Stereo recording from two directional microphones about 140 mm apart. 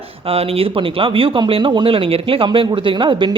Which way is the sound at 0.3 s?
45° right (ahead or behind).